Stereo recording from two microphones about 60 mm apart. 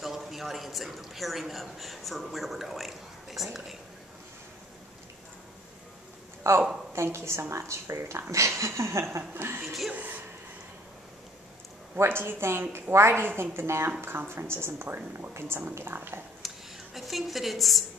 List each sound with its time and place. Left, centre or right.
0.0 s a man's voice: centre
6.4 s speech: right
9.7 s speech: centre
9.9 s speech: right
12.0 s speech: right
16.4 s a woman's voice: centre